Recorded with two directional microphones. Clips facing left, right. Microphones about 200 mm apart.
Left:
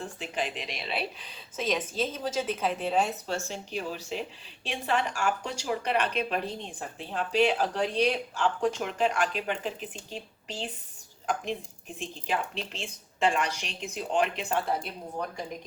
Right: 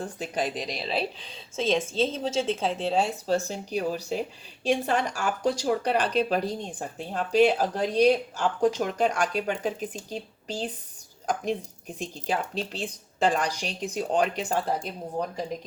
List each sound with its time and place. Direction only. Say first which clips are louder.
0.0 s speech: right 4 dB; 40° right (ahead or behind)